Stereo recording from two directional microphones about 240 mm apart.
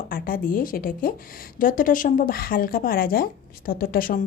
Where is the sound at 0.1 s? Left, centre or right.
Left.